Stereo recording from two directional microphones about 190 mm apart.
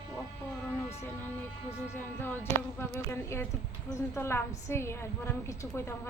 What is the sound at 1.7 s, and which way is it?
A woman's voice, 10° left (ahead or behind).